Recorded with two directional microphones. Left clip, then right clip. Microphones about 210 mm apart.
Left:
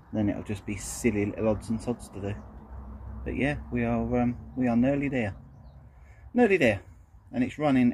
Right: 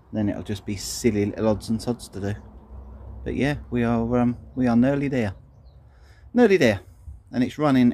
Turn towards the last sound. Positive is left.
turn(degrees=-30)  # may be behind; listen again after turning